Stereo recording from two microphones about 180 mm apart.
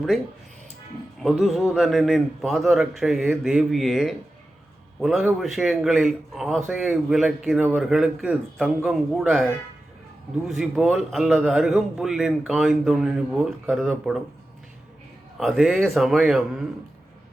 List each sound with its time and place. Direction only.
1.2 s a man's voice: centre (ahead or behind)
15.4 s a man's voice: centre (ahead or behind)